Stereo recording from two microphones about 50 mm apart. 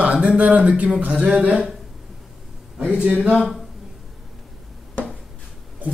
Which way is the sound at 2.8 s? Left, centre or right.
Right.